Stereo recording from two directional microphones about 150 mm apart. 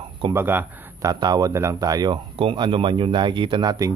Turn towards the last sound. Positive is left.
turn(degrees=-30)  # may be behind; listen again after turning